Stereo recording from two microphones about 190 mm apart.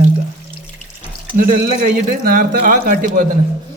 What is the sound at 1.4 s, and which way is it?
A man's voice, 45° right (ahead or behind).